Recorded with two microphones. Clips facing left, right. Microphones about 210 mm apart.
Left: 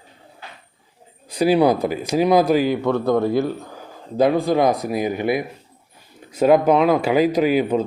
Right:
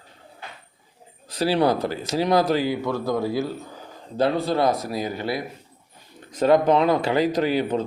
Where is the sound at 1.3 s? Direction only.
15° left (ahead or behind).